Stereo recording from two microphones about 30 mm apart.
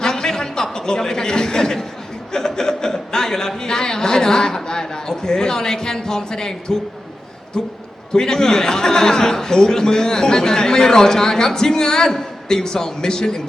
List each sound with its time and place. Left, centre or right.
0.0 s a sound: centre
2.3 s chuckle: centre
3.6 s a man's voice: left